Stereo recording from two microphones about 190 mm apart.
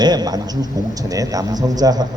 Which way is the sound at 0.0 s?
20° right (ahead or behind).